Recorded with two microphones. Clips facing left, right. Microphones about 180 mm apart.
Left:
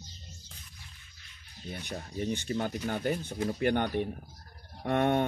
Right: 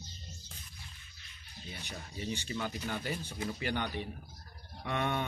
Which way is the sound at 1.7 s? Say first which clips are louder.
Left 7 dB; 50° left (ahead or behind).